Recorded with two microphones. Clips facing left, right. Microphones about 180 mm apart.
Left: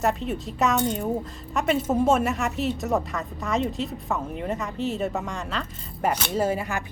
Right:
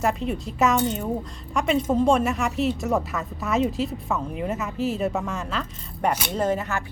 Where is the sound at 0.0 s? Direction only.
Centre (ahead or behind).